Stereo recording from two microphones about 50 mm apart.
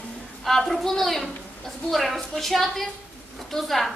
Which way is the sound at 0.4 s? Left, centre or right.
Centre.